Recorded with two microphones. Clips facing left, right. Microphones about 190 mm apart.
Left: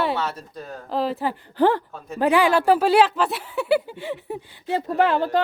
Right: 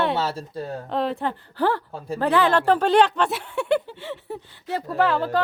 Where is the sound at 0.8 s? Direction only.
Centre (ahead or behind).